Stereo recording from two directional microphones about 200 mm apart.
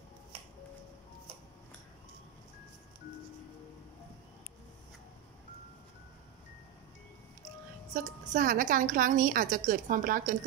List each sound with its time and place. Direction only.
7.9 s a woman's voice: 40° right (ahead or behind)